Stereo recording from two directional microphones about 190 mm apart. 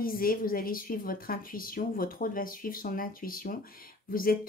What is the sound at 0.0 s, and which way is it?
A woman's voice, 50° left (ahead or behind).